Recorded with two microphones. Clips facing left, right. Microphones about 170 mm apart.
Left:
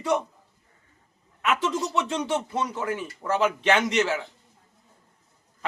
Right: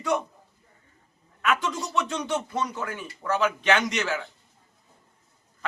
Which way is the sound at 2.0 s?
30° left (ahead or behind).